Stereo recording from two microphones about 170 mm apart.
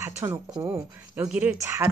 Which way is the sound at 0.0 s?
15° right (ahead or behind).